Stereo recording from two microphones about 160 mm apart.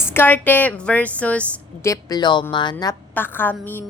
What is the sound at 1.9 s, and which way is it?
A woman's voice, 25° left (ahead or behind).